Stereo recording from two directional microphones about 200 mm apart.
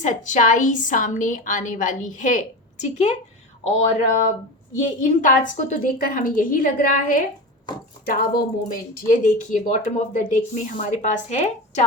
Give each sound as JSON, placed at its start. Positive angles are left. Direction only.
{"t": 0.0, "sound": "speech", "side_deg": 40}